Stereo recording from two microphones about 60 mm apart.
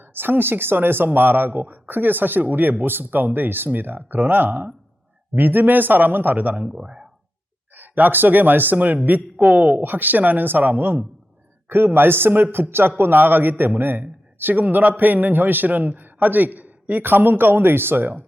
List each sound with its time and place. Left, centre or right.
0.0 s a man's voice: right; by 7.1 s centre
7.7 s a man's voice: right
9.8 s a man's voice: right